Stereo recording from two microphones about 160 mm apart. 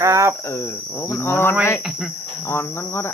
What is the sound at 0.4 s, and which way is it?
Cricket, 15° left (ahead or behind).